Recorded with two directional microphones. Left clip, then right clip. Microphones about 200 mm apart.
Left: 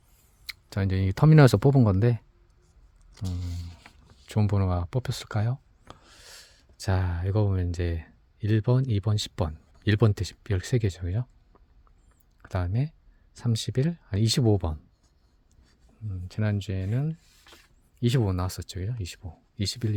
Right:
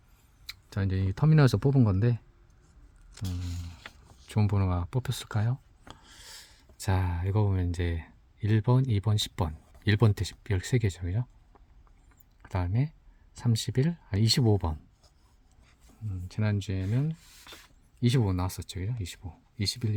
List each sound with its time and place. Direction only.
0.4 s speech: 35° left (ahead or behind)
3.2 s a sound: 15° left (ahead or behind)
4.3 s speech: 20° left (ahead or behind)
16.3 s speech: 30° left (ahead or behind)